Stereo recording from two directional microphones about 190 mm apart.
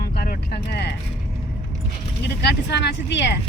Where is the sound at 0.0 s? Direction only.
55° left (ahead or behind).